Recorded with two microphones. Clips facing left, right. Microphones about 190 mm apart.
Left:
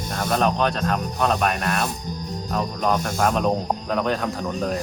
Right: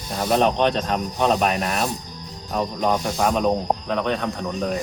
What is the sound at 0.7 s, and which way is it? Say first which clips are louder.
Speech: even; centre (ahead or behind).